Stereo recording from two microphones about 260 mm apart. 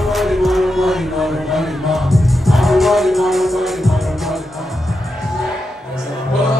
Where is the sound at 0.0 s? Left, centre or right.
Centre.